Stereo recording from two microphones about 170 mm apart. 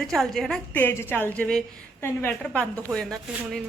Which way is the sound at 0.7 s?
15° left (ahead or behind).